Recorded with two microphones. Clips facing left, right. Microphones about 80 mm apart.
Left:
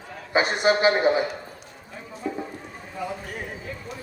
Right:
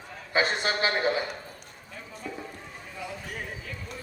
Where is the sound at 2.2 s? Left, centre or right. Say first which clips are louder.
Left 8 dB; left.